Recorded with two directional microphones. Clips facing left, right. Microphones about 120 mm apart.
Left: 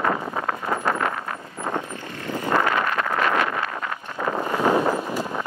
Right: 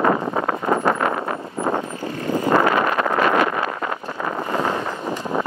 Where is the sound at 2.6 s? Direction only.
20° right (ahead or behind).